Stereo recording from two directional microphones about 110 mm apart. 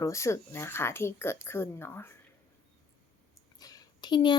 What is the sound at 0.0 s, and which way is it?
A woman's voice, 25° left (ahead or behind).